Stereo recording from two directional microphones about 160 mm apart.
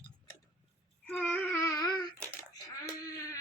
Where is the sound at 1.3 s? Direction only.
15° left (ahead or behind).